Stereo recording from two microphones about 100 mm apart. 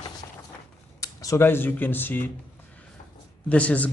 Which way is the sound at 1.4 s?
20° left (ahead or behind).